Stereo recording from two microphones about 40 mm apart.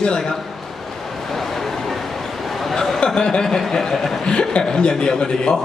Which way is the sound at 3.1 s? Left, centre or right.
Centre.